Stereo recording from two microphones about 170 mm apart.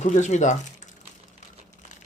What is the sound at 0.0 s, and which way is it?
Speech, 45° left (ahead or behind).